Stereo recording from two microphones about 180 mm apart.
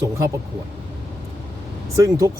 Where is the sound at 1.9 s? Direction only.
20° right (ahead or behind).